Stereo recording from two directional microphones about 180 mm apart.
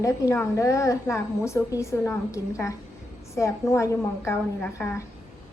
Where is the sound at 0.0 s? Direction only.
15° left (ahead or behind).